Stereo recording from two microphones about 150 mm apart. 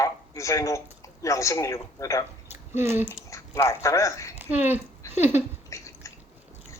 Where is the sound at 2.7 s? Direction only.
15° right (ahead or behind).